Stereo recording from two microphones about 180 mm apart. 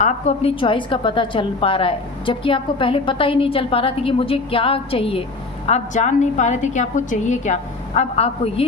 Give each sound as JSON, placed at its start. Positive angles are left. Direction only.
{"t": 0.0, "sound": "a woman's voice", "side_deg": 40}